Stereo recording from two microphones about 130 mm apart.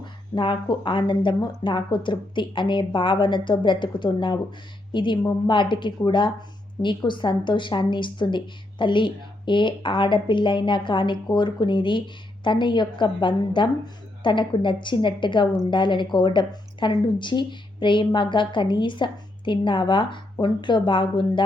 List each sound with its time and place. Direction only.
0.0 s a woman's voice: 35° left (ahead or behind)